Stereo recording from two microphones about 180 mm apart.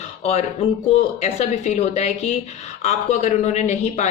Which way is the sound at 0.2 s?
35° left (ahead or behind).